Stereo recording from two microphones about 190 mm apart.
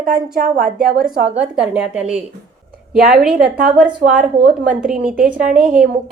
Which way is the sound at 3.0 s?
50° right (ahead or behind).